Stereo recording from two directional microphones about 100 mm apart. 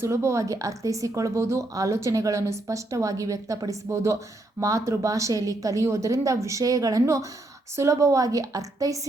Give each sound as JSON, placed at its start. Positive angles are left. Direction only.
{"t": 0.0, "sound": "a woman's voice", "side_deg": -30}